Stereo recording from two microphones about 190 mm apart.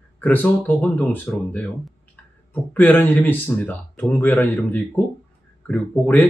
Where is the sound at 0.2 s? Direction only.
10° left (ahead or behind).